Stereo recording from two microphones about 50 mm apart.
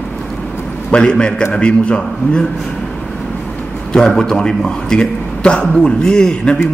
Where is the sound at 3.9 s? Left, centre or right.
Centre.